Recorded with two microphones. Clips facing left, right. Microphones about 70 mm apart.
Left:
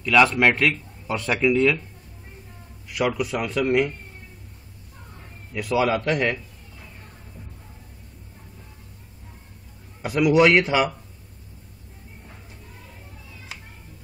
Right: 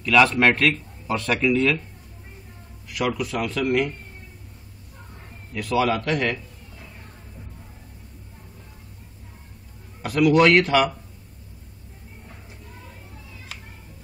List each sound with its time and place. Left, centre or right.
0.0 s speech: centre
2.9 s speech: centre
5.5 s speech: centre
10.0 s speech: centre